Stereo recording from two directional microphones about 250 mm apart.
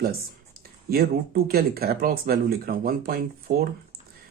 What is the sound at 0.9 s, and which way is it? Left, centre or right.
Speech, right.